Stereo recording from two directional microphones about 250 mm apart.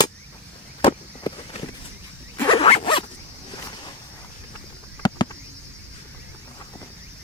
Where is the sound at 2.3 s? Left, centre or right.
Centre.